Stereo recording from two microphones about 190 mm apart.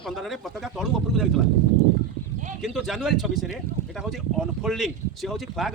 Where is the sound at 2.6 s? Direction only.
Centre (ahead or behind).